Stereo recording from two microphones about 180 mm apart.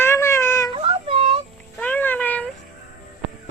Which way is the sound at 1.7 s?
10° left (ahead or behind).